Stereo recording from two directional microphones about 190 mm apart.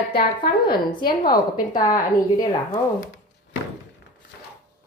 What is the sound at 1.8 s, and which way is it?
A woman's voice, 20° left (ahead or behind).